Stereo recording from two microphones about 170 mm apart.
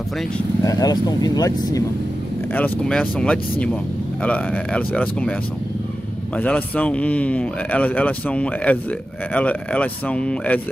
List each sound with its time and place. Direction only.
0.7 s speech: 20° left (ahead or behind)
2.5 s speech: 5° left (ahead or behind)
6.3 s speech: 10° left (ahead or behind)